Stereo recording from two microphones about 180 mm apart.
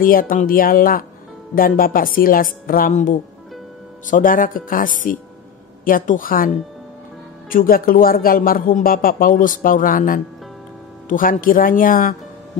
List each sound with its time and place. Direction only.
0.0 s speech: 50° left (ahead or behind)